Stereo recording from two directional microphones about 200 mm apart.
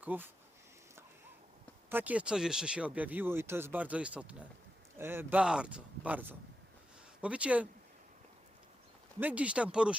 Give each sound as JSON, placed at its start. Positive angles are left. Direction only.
{"t": 0.0, "sound": "speech", "side_deg": -10}
{"t": 1.9, "sound": "speech", "side_deg": -10}
{"t": 9.2, "sound": "speech", "side_deg": -5}